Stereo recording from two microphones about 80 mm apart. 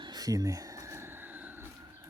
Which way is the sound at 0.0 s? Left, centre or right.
Right.